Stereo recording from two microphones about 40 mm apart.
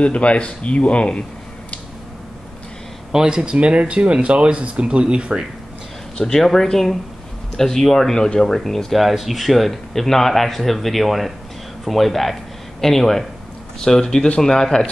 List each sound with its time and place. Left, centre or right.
0.0 s speech: left
3.1 s speech: centre
3.5 s speech: right
6.1 s speech: centre